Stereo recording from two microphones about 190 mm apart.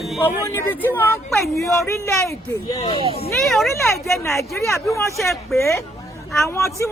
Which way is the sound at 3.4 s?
Centre (ahead or behind).